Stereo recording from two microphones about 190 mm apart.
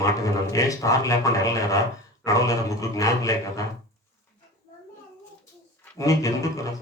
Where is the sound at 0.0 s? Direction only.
15° left (ahead or behind).